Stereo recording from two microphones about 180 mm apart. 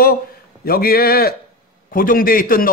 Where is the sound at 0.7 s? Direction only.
55° left (ahead or behind).